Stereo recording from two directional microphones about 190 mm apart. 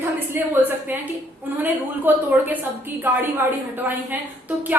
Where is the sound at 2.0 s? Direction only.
10° right (ahead or behind).